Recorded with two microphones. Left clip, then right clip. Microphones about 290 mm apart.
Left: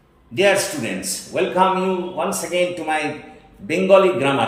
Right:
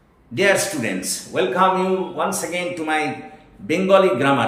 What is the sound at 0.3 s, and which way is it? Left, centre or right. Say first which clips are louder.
Speech: left 1 dB; centre.